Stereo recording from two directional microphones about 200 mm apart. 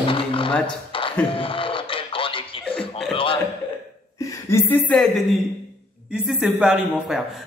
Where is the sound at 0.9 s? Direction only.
25° left (ahead or behind).